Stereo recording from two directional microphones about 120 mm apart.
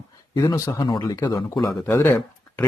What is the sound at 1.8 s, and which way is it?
Speech, 20° left (ahead or behind).